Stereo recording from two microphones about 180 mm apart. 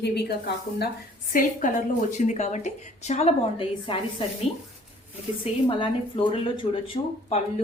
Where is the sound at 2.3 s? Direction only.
40° left (ahead or behind).